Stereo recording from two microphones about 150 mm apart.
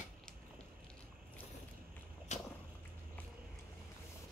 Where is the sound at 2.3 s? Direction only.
50° left (ahead or behind).